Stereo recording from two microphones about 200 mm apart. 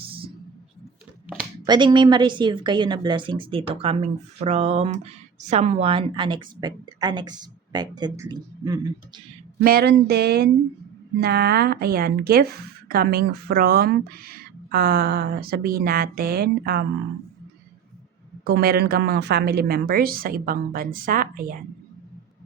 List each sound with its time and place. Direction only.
1.6 s speech: 20° right (ahead or behind)
9.6 s speech: 50° right (ahead or behind)
18.4 s speech: 50° right (ahead or behind)